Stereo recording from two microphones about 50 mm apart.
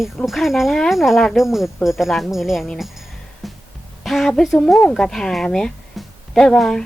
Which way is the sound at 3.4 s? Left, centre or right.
Centre.